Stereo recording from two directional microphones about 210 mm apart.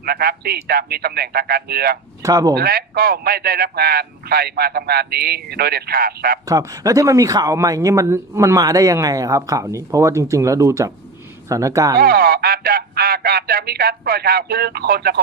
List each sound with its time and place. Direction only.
0.0 s speech: 45° right (ahead or behind)
2.2 s speech: 15° right (ahead or behind)
2.6 s speech: 45° right (ahead or behind)
6.4 s speech: 15° right (ahead or behind)
11.9 s speech: 45° right (ahead or behind)